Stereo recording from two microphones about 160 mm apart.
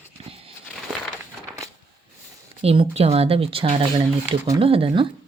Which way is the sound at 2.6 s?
40° right (ahead or behind).